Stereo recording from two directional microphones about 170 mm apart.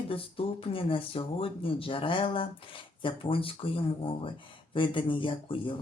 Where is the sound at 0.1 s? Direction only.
35° left (ahead or behind).